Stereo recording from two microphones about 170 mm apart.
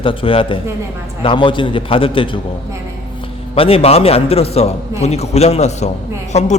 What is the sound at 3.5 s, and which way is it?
A man's voice, 35° left (ahead or behind).